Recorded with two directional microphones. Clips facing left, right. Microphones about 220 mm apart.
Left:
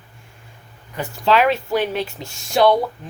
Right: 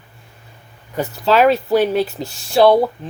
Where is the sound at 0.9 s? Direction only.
40° right (ahead or behind).